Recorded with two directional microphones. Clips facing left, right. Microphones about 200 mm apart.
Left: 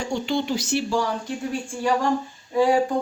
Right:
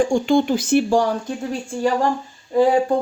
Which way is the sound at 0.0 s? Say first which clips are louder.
Right 8 dB; 50° right (ahead or behind).